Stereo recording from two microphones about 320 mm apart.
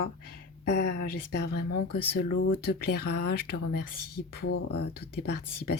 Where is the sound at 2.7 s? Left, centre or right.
Left.